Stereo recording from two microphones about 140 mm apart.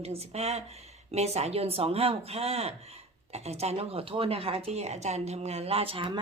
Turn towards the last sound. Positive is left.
turn(degrees=-40)  # may be behind; listen again after turning